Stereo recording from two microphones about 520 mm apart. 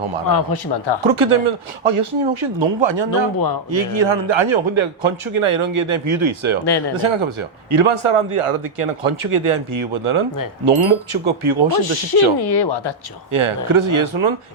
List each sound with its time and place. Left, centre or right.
0.3 s speech: left
1.0 s speech: right
3.3 s a man's voice: left
3.7 s speech: right
6.7 s speech: left
6.9 s a man's voice: right
11.8 s speech: left
13.3 s a man's voice: right